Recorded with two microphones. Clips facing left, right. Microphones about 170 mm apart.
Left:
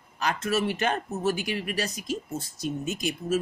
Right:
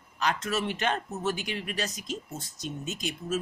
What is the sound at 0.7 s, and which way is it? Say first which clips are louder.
Speech: left 2 dB; 45° left (ahead or behind).